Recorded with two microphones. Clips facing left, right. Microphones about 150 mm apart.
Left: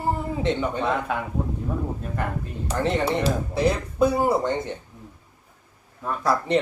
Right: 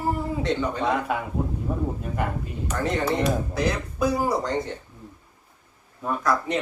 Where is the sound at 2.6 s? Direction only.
30° left (ahead or behind).